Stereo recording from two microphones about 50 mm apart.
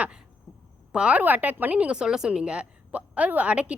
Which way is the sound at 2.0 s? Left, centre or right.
Centre.